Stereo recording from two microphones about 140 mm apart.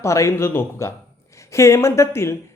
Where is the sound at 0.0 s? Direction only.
20° left (ahead or behind).